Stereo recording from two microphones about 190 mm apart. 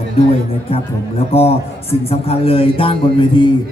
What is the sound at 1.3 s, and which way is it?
A man's voice, 30° left (ahead or behind).